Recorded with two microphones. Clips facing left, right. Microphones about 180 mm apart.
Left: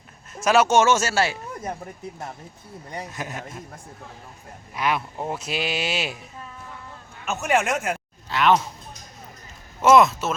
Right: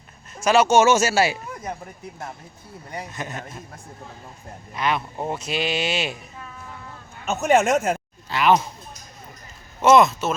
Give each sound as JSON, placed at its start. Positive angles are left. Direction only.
{"t": 0.3, "sound": "speech", "side_deg": 5}
{"t": 3.1, "sound": "speech", "side_deg": 10}
{"t": 4.7, "sound": "speech", "side_deg": 5}
{"t": 7.4, "sound": "speech", "side_deg": -40}
{"t": 8.3, "sound": "speech", "side_deg": 0}
{"t": 9.8, "sound": "speech", "side_deg": 0}